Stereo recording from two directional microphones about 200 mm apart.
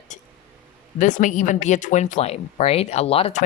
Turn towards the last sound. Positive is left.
turn(degrees=30)  # may be behind; listen again after turning